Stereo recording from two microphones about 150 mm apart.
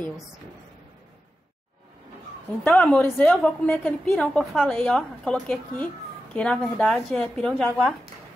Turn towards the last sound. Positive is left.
turn(degrees=0)  # may be behind; listen again after turning